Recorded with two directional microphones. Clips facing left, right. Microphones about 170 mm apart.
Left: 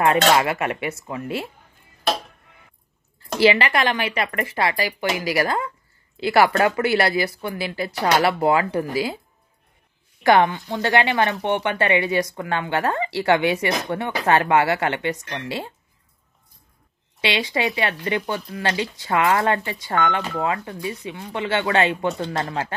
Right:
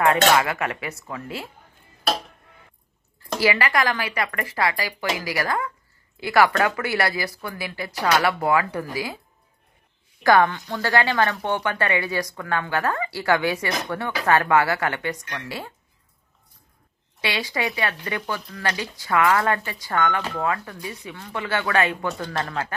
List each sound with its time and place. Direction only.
0.0 s speech: 25° left (ahead or behind)
3.3 s speech: 25° left (ahead or behind)
10.2 s speech: 20° left (ahead or behind)
17.2 s speech: 25° left (ahead or behind)